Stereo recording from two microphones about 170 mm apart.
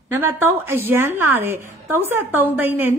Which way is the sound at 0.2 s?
15° right (ahead or behind).